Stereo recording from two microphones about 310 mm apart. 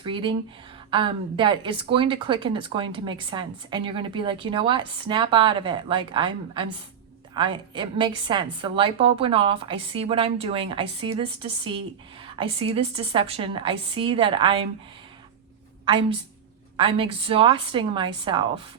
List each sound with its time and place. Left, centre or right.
0.0 s speech: centre
16.7 s speech: centre